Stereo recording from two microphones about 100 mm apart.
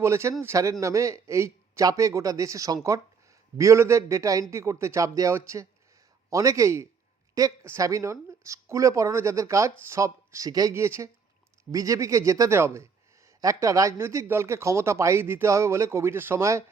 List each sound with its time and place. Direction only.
0.0 s speech: 30° right (ahead or behind)